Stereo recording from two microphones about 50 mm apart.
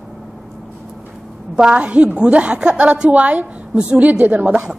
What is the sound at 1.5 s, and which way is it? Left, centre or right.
A woman's voice, right.